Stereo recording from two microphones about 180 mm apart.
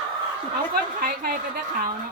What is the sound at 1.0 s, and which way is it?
Speech, 55° right (ahead or behind).